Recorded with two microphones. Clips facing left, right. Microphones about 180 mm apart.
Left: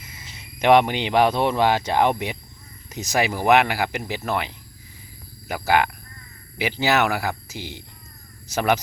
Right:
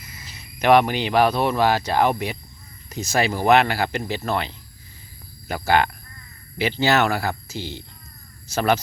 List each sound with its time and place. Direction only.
0.1 s speech: 25° left (ahead or behind)